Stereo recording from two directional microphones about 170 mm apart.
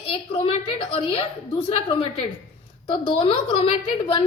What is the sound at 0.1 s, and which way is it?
A woman's voice, 35° left (ahead or behind).